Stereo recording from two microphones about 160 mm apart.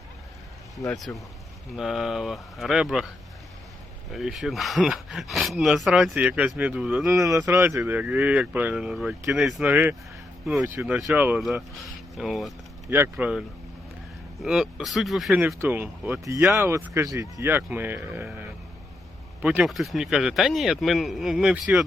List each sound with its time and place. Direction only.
0.9 s speech: centre (ahead or behind)
4.1 s speech: centre (ahead or behind)
7.1 s speech: 20° right (ahead or behind); by 12.5 s centre (ahead or behind)
12.9 s speech: 10° right (ahead or behind)
14.4 s speech: 5° right (ahead or behind)